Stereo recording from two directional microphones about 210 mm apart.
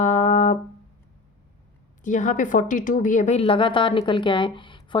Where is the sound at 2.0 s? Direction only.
35° left (ahead or behind).